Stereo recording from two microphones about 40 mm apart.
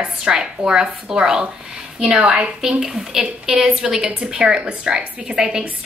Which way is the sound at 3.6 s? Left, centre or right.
Right.